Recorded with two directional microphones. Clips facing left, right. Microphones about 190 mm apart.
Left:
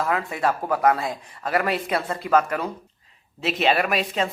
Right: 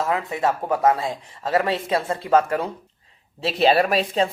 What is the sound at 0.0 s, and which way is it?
Speech, 20° right (ahead or behind).